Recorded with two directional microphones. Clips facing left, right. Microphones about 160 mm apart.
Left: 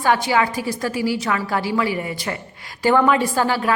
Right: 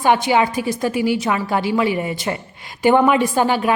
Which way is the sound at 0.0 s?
20° right (ahead or behind).